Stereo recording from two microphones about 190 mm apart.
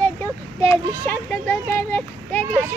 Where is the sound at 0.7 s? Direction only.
10° left (ahead or behind).